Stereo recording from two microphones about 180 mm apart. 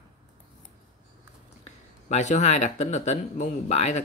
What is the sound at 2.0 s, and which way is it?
Speech, 40° left (ahead or behind).